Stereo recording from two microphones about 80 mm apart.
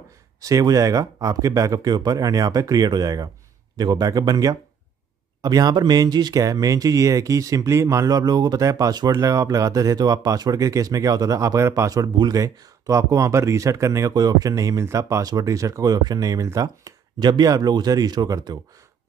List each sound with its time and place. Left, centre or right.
0.4 s speech: right
9.1 s speech: right